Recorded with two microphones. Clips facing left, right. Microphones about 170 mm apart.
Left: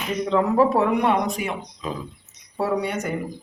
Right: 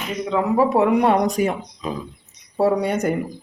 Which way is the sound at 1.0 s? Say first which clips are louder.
Right 4 dB; 40° right (ahead or behind).